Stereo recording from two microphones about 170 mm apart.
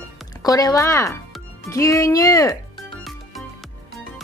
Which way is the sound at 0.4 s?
20° left (ahead or behind).